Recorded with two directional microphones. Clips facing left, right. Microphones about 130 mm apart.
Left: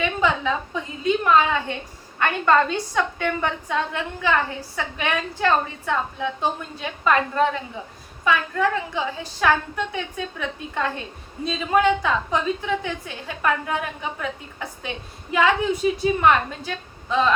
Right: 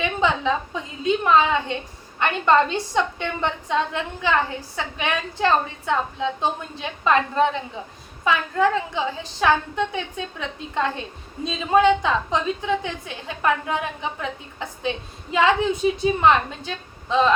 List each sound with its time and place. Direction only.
0.0 s a woman's voice: 20° right (ahead or behind)
11.4 s a woman's voice: 20° right (ahead or behind)